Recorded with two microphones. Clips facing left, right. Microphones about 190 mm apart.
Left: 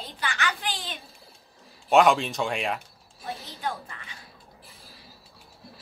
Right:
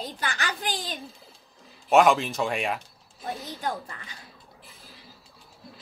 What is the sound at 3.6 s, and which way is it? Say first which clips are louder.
Speech: right 1 dB; 35° right (ahead or behind).